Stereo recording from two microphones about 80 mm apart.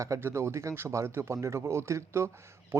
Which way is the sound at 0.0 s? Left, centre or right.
Right.